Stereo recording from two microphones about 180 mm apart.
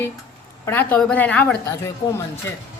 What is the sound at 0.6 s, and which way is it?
A woman's voice, 10° left (ahead or behind).